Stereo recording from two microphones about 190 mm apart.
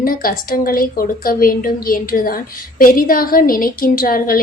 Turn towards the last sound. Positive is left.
turn(degrees=50)  # may be behind; listen again after turning